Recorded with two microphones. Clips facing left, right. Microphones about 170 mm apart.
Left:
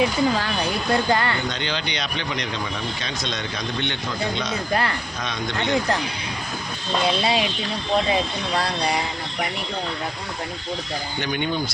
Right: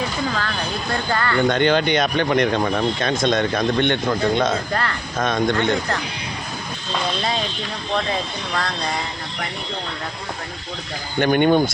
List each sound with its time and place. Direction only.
0.0 s speech: 15° left (ahead or behind)
1.5 s speech: 55° right (ahead or behind)
4.7 s speech: 15° left (ahead or behind)
5.1 s speech: 50° right (ahead or behind)
7.2 s speech: 10° left (ahead or behind)
11.2 s speech: 55° right (ahead or behind)